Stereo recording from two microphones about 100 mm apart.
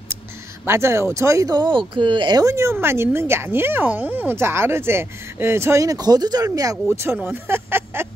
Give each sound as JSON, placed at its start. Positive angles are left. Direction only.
{"t": 0.7, "sound": "speech", "side_deg": -25}
{"t": 2.4, "sound": "speech", "side_deg": -30}
{"t": 6.9, "sound": "speech", "side_deg": -25}